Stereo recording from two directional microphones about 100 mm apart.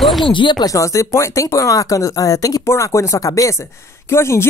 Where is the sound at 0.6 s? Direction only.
35° left (ahead or behind).